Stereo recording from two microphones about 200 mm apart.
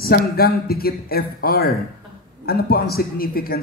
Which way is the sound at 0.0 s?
50° left (ahead or behind).